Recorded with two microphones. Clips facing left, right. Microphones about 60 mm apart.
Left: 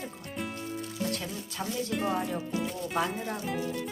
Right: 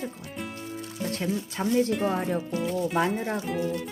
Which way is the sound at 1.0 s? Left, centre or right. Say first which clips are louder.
Right 5 dB; right.